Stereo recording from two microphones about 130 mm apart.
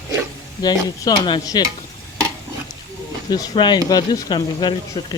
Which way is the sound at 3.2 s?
30° left (ahead or behind).